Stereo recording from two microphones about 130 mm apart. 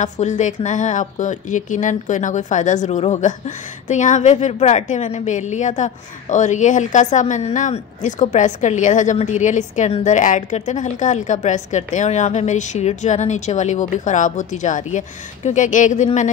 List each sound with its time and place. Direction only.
0.0 s a woman's voice: 65° left (ahead or behind)